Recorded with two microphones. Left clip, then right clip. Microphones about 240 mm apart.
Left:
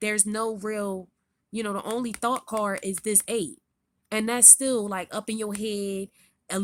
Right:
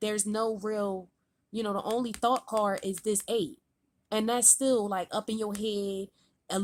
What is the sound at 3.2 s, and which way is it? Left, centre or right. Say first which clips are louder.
A woman's voice: left 1 dB; left.